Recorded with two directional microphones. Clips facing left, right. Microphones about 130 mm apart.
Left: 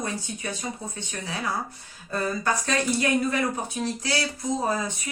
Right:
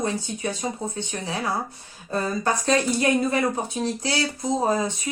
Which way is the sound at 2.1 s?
25° right (ahead or behind).